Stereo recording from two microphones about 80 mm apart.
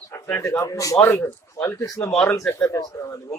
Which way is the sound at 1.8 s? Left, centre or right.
Left.